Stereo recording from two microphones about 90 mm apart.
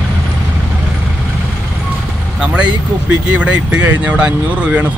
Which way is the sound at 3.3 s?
15° right (ahead or behind).